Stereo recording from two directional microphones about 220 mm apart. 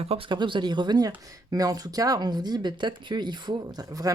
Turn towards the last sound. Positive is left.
turn(degrees=-15)  # may be behind; listen again after turning